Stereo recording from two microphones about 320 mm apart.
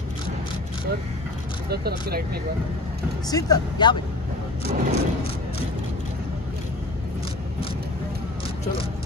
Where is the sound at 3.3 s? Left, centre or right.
Centre.